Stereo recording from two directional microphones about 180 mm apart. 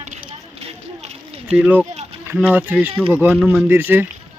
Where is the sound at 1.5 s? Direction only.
5° right (ahead or behind).